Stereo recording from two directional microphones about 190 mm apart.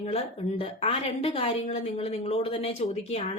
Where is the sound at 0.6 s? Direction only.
30° left (ahead or behind).